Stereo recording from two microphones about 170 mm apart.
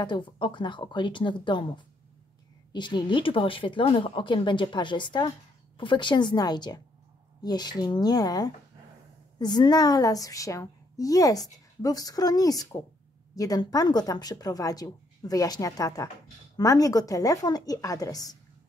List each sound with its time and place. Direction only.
0.0 s speech: 30° left (ahead or behind)
2.7 s speech: 25° left (ahead or behind)